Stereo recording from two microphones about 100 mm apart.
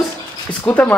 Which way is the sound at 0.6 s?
15° left (ahead or behind).